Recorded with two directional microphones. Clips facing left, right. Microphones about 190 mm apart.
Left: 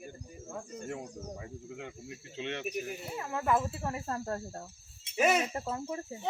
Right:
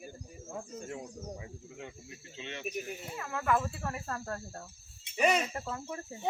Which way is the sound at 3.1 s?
25° left (ahead or behind).